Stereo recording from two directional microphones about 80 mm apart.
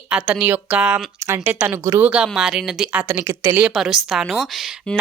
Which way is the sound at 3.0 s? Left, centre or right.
Right.